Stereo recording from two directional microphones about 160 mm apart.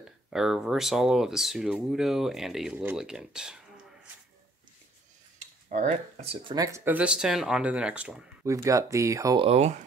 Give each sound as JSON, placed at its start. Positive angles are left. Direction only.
{"t": 0.3, "sound": "speech", "side_deg": -5}
{"t": 5.7, "sound": "speech", "side_deg": -45}
{"t": 6.4, "sound": "speech", "side_deg": -25}
{"t": 8.5, "sound": "speech", "side_deg": -20}
{"t": 9.4, "sound": "speech", "side_deg": -45}